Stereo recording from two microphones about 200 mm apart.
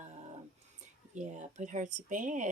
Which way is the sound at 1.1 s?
35° right (ahead or behind).